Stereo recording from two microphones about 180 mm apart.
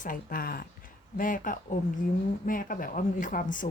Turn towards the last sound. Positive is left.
turn(degrees=45)  # may be behind; listen again after turning